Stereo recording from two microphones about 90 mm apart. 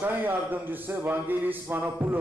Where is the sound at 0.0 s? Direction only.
20° right (ahead or behind).